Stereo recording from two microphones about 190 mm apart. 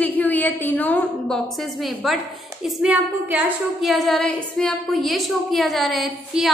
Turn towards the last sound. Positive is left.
turn(degrees=0)  # may be behind; listen again after turning